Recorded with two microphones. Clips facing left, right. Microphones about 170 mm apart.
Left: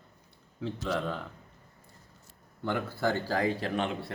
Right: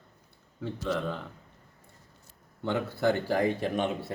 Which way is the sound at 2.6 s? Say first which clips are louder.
Right 2 dB; 20° right (ahead or behind).